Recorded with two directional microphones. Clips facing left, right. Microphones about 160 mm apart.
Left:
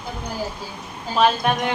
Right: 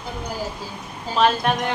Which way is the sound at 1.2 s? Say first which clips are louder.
Left 1 dB; 5° left (ahead or behind).